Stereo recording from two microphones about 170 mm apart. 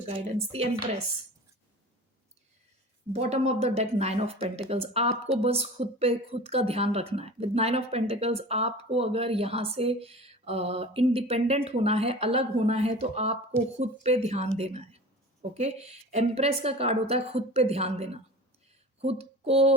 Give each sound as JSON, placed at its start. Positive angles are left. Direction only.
{"t": 0.3, "sound": "speech", "side_deg": -35}
{"t": 3.1, "sound": "speech", "side_deg": -40}